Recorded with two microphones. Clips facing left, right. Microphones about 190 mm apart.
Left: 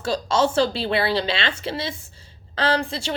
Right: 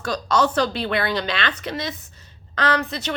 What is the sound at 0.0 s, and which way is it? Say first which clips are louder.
A woman's voice: even; 25° left (ahead or behind).